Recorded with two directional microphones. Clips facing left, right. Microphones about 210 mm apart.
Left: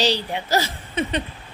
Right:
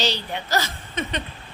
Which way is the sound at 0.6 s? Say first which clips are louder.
Left 4 dB; 10° left (ahead or behind).